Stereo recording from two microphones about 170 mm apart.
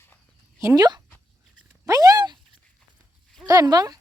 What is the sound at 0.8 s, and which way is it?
Speech, 25° right (ahead or behind).